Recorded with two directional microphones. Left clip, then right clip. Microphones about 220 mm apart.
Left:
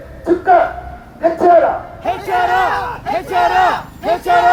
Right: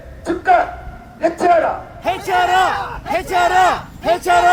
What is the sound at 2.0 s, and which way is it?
Speech, 40° right (ahead or behind).